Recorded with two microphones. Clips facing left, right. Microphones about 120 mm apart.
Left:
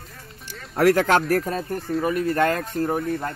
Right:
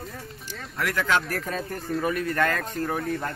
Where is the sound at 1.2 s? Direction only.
35° left (ahead or behind).